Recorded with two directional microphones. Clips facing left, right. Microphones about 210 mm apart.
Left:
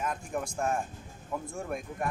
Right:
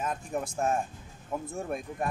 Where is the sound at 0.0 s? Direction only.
25° right (ahead or behind).